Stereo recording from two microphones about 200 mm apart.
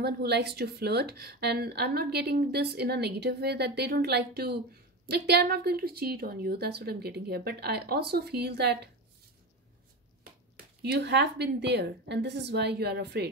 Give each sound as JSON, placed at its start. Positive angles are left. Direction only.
{"t": 0.0, "sound": "a woman's voice", "side_deg": -55}
{"t": 10.8, "sound": "a woman's voice", "side_deg": -55}